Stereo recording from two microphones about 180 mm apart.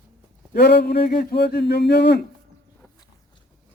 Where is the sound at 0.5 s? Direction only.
60° left (ahead or behind).